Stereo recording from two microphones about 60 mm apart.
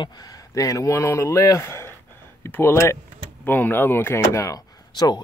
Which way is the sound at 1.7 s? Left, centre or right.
Left.